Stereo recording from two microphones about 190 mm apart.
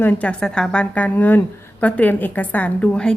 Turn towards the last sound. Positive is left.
turn(degrees=5)  # may be behind; listen again after turning